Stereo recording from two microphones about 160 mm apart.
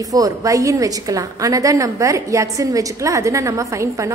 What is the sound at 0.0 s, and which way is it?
A woman's voice, 20° right (ahead or behind).